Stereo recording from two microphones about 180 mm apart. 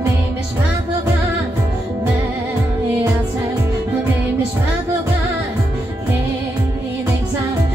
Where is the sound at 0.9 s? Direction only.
20° right (ahead or behind).